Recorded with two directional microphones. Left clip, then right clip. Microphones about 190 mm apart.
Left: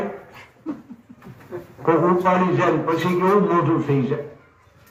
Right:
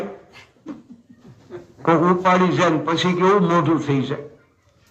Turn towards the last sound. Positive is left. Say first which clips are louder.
# even
turn(degrees=-30)  # may be behind; listen again after turning